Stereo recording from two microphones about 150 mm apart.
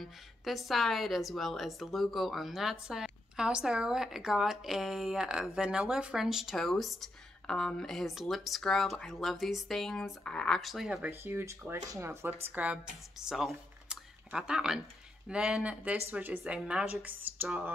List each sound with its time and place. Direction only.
0.0 s a woman's voice: centre (ahead or behind)